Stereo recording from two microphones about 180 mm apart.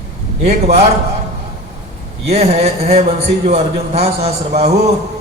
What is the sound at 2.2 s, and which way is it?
A man's voice, 35° right (ahead or behind).